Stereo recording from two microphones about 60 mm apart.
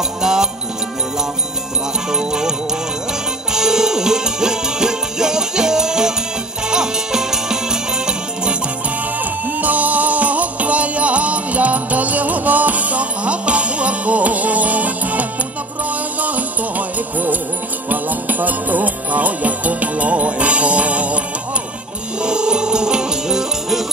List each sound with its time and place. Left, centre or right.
0.2 s music: centre
2.0 s music: centre
3.5 s music: centre
9.2 s music: right
22.2 s music: centre